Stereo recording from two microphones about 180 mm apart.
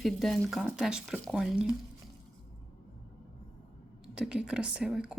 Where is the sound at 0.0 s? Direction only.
Centre (ahead or behind).